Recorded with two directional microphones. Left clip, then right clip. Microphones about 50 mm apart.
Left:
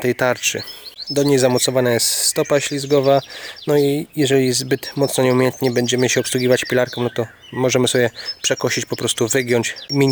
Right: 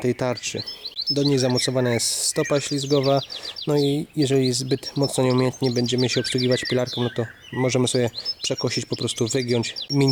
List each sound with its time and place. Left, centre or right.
0.0 s speech: left
5.6 s speech: left
8.4 s speech: left